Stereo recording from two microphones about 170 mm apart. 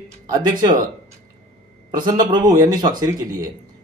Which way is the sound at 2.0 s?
25° right (ahead or behind).